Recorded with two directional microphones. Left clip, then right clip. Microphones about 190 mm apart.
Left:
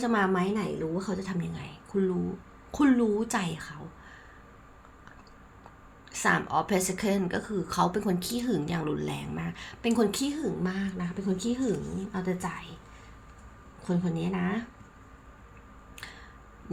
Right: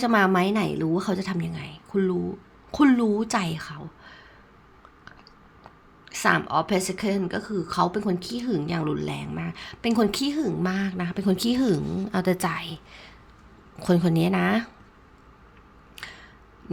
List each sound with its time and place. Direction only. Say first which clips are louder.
0.0 s a woman's voice: right 6 dB; 25° right (ahead or behind)
0.8 s a woman's voice: right 6 dB; 40° right (ahead or behind)
1.2 s a woman's voice: right 5 dB; 25° right (ahead or behind)
6.1 s a woman's voice: right 4 dB; 20° right (ahead or behind); by 12.7 s 40° right (ahead or behind)
13.7 s a woman's voice: right 10 dB; 45° right (ahead or behind)
16.0 s a sound: right 5 dB; 20° right (ahead or behind)